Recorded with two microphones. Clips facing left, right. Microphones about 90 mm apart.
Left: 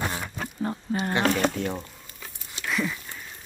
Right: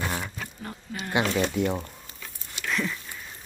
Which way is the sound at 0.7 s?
35° left (ahead or behind).